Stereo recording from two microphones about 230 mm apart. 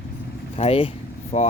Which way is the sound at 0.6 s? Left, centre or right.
Left.